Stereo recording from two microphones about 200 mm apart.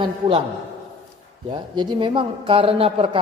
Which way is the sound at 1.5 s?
25° right (ahead or behind).